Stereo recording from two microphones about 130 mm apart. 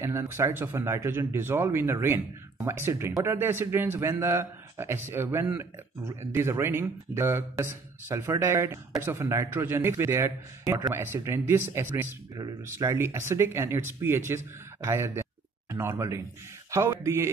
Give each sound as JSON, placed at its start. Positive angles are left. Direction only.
{"t": 0.0, "sound": "a man's voice", "side_deg": -25}